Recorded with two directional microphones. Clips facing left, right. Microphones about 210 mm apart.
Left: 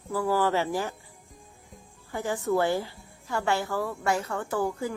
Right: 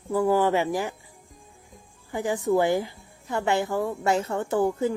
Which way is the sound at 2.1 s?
15° right (ahead or behind).